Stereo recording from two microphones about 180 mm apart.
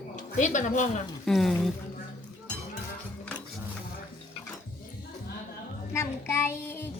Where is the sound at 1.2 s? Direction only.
Centre (ahead or behind).